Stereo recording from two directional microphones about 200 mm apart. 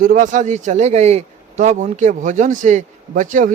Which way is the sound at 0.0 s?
40° right (ahead or behind).